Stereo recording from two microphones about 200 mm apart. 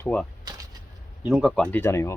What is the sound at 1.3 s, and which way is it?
Speech, centre (ahead or behind).